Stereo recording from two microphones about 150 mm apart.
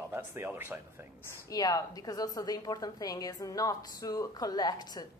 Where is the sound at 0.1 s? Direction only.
15° right (ahead or behind).